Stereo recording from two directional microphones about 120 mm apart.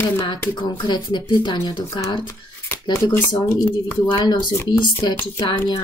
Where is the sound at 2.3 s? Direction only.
25° left (ahead or behind).